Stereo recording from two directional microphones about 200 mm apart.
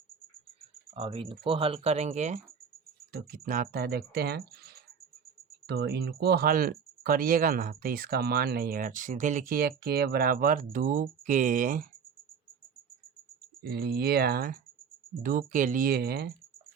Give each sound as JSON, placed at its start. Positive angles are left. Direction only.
{"t": 0.9, "sound": "speech", "side_deg": -25}
{"t": 3.1, "sound": "speech", "side_deg": -50}
{"t": 13.6, "sound": "speech", "side_deg": -50}